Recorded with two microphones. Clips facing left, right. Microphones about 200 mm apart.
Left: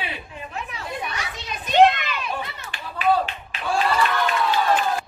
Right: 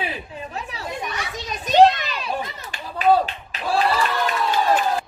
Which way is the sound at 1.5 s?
40° right (ahead or behind).